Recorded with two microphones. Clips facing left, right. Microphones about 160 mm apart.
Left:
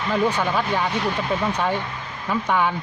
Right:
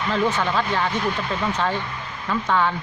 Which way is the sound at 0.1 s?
15° left (ahead or behind).